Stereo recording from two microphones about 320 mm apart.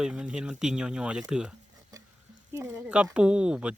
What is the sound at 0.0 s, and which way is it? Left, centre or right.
Speech, centre.